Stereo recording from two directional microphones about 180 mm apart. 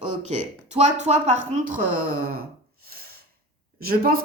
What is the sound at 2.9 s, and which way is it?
Snort, 60° right (ahead or behind).